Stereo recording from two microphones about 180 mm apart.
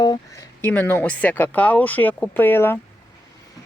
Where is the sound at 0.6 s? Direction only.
10° left (ahead or behind).